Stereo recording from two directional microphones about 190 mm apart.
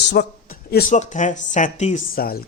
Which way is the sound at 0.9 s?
40° left (ahead or behind).